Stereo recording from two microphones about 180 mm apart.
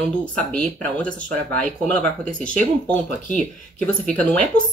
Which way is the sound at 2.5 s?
5° left (ahead or behind).